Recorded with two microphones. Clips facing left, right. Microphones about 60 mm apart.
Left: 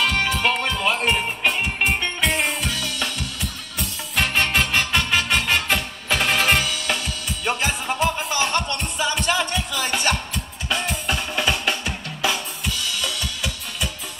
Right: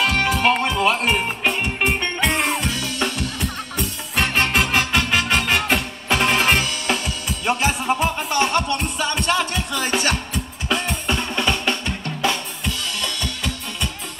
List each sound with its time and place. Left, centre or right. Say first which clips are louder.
0.3 s music: right 3 dB; centre
1.0 s music: right 1 dB; centre